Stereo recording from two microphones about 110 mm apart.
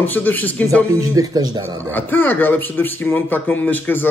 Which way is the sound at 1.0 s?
35° right (ahead or behind).